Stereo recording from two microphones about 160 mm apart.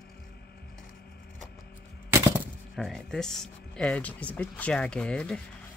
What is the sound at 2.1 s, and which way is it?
Gunshot, 15° right (ahead or behind).